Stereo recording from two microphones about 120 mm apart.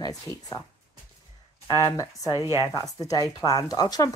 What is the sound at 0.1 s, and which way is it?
Speech, 30° left (ahead or behind).